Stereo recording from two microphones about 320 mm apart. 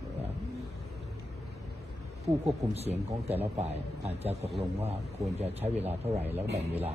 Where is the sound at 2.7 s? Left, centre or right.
Centre.